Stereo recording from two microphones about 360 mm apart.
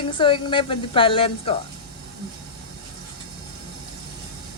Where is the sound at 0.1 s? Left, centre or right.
Centre.